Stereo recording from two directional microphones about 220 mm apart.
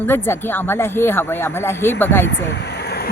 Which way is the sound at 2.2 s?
50° left (ahead or behind).